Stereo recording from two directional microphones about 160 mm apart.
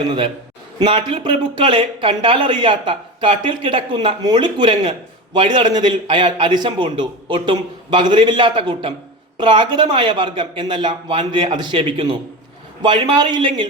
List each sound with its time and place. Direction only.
0.0 s speech: 30° right (ahead or behind)